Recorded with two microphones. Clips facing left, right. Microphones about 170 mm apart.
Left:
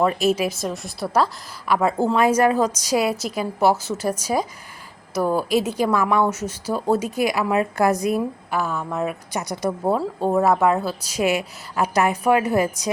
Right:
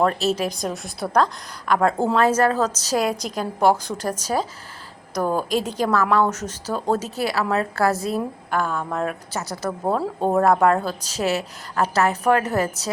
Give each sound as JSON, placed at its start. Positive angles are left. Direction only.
{"t": 0.0, "sound": "a woman's voice", "side_deg": 10}
{"t": 8.4, "sound": "a woman's voice", "side_deg": 5}